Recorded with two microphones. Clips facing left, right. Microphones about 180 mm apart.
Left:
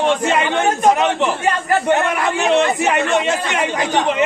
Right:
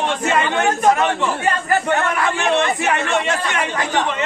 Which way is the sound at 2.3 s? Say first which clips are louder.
Left 3 dB; 20° left (ahead or behind).